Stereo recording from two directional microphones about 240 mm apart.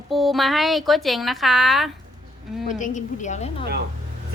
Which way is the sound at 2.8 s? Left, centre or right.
Left.